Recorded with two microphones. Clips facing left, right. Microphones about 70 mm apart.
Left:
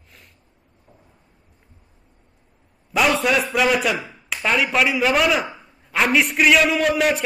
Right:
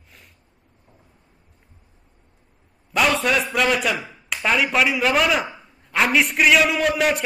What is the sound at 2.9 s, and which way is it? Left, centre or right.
A man's voice, centre.